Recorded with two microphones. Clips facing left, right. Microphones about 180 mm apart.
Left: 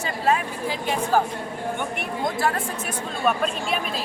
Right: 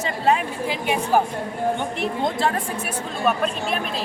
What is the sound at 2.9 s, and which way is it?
Speech, centre (ahead or behind).